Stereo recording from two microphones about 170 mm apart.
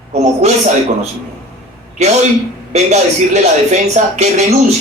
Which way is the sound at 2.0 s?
40° right (ahead or behind).